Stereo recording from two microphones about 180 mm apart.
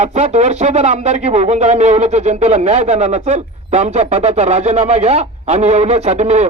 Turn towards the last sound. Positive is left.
turn(degrees=-35)  # may be behind; listen again after turning